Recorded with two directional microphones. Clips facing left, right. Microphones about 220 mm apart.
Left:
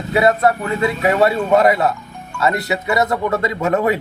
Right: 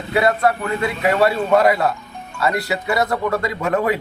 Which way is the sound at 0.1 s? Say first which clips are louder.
Left 2 dB; 25° left (ahead or behind).